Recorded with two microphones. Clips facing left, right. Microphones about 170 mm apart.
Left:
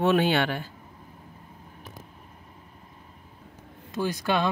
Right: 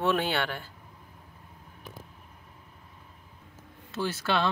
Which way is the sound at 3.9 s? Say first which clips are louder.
Left 3 dB; 15° left (ahead or behind).